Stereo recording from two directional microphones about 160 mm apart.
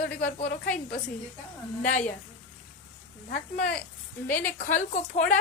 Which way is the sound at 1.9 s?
50° left (ahead or behind).